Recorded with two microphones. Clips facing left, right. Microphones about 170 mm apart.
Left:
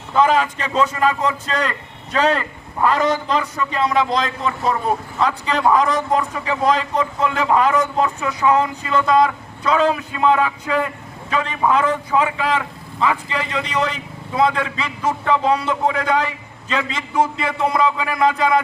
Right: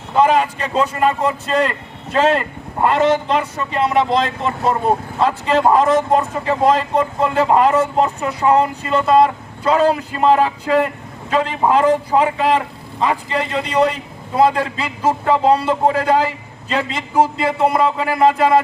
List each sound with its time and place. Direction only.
0.2 s a man's voice: 30° right (ahead or behind)